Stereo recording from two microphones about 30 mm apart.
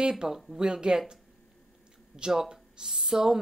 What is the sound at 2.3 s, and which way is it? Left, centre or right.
Speech, right.